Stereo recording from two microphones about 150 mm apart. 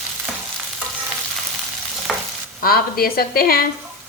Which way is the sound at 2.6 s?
80° left.